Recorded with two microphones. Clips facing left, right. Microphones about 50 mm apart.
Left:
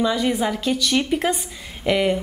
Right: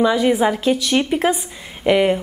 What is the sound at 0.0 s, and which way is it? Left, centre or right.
A woman's voice, centre.